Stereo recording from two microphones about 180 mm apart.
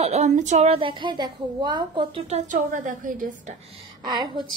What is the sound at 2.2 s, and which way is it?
A woman's voice, 40° right (ahead or behind).